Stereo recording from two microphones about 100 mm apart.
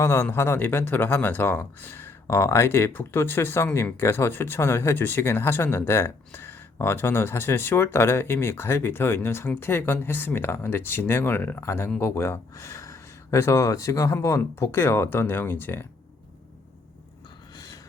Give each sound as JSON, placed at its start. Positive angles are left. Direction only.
{"t": 0.0, "sound": "speech", "side_deg": 25}